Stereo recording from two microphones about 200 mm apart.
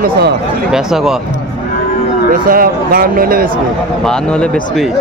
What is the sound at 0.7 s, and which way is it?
Speech, centre (ahead or behind).